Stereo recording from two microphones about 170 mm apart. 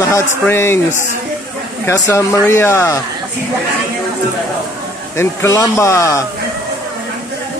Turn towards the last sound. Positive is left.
turn(degrees=15)  # may be behind; listen again after turning